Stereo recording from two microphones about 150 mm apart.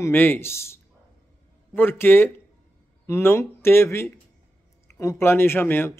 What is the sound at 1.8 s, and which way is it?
Speech, 15° left (ahead or behind).